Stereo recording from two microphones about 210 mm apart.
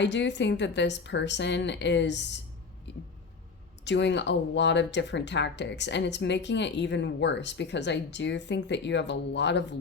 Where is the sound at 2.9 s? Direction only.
55° left (ahead or behind).